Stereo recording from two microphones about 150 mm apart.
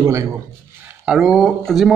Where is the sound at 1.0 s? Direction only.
Centre (ahead or behind).